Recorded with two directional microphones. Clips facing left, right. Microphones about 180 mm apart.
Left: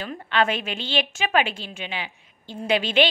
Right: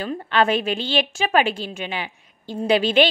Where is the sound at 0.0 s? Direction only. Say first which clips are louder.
Right 3 dB; 40° right (ahead or behind).